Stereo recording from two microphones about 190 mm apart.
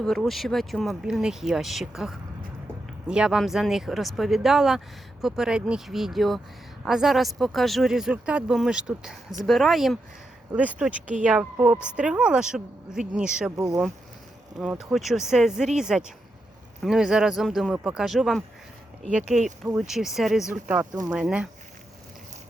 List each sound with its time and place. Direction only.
0.0 s speech: centre (ahead or behind)
13.6 s speech: 15° right (ahead or behind)